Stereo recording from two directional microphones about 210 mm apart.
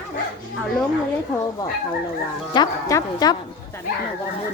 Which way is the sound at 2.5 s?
20° left (ahead or behind).